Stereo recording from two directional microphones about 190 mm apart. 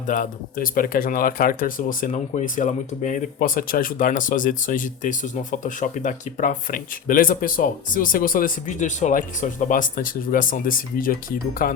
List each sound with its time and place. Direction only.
0.1 s speech: 45° left (ahead or behind)